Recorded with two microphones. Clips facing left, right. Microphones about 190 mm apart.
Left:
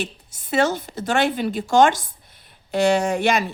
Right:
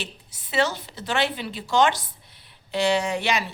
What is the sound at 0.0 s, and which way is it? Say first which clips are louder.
A woman's voice: left 7 dB; 45° left (ahead or behind).